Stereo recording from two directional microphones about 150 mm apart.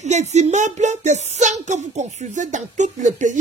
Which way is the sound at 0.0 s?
50° right (ahead or behind).